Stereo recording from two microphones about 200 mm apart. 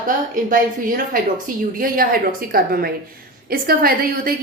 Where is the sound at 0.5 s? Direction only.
45° right (ahead or behind).